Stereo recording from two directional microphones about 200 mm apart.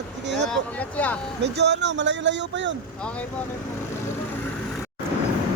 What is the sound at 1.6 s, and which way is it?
Speech, 60° right (ahead or behind).